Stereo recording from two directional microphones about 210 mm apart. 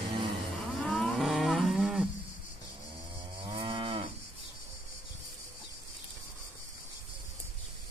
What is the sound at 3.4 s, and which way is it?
Cattle, 25° right (ahead or behind).